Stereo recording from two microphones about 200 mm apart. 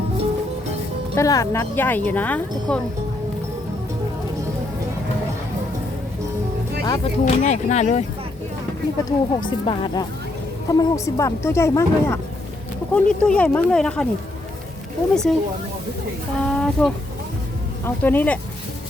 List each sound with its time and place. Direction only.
1.1 s speech: 15° left (ahead or behind)
6.8 s speech: 30° left (ahead or behind)
9.0 s speech: 25° left (ahead or behind); by 14.1 s 5° left (ahead or behind)
15.1 s speech: 5° left (ahead or behind)
16.5 s speech: 5° left (ahead or behind)